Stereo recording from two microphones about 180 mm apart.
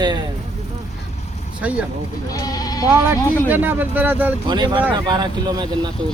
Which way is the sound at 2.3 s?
20° left (ahead or behind).